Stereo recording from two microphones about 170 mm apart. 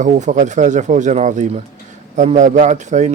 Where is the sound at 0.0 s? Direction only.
45° right (ahead or behind).